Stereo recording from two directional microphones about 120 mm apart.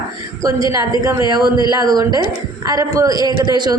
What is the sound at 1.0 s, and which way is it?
Speech, 30° right (ahead or behind).